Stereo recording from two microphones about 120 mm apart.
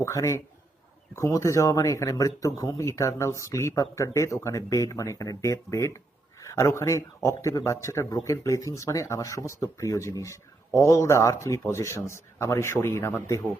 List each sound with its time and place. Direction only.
0.0 s speech: 25° left (ahead or behind)